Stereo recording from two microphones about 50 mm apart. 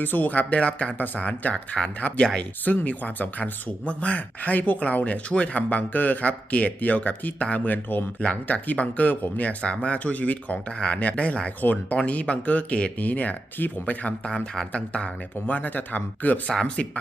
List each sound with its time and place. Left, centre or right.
0.0 s speech: left
8.2 s speech: left
11.6 s speech: left
12.0 s speech: left
14.3 s speech: centre
15.4 s speech: left
16.5 s speech: centre